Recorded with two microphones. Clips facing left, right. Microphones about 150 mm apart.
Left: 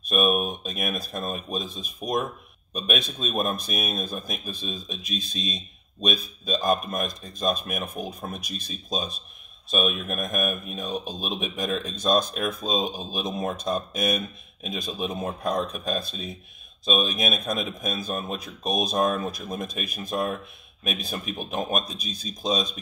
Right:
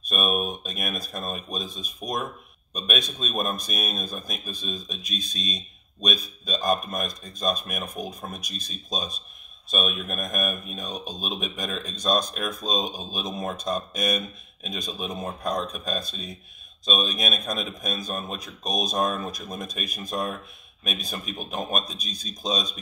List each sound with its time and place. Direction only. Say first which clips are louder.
0.1 s speech: left 3 dB; 5° left (ahead or behind)